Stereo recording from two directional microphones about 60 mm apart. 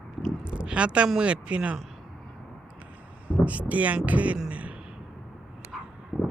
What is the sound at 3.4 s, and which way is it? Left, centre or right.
Speech, right.